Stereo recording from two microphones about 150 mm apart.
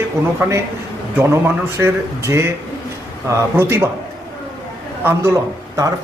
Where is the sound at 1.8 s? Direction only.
15° right (ahead or behind).